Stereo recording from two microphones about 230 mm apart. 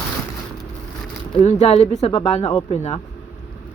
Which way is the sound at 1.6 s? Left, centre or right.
Left.